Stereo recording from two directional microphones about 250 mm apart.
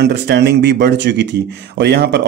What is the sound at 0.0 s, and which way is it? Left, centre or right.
Speech, right.